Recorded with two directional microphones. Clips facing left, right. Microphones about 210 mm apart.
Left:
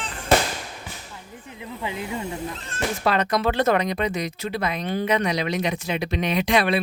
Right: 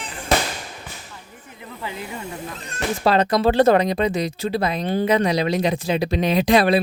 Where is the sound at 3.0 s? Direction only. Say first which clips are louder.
Right 5 dB; 30° right (ahead or behind).